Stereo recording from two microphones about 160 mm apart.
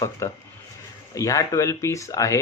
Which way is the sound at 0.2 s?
20° left (ahead or behind).